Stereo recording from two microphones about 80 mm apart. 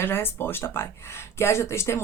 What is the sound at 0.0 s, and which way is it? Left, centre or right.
Speech, left.